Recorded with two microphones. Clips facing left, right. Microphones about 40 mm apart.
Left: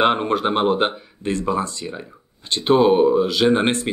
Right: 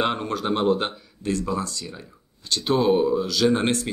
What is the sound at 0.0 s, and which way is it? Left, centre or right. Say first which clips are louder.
Speech: left 7 dB; left.